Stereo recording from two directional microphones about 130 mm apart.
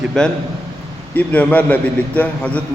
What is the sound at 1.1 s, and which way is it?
A man's voice, 10° left (ahead or behind).